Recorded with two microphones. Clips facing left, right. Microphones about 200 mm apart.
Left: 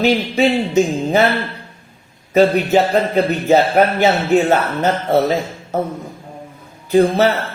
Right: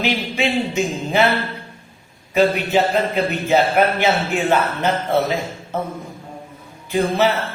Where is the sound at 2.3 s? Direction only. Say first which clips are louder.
Left 4 dB; 40° left (ahead or behind).